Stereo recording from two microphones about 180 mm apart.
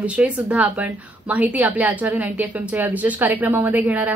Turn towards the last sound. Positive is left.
turn(degrees=-10)  # may be behind; listen again after turning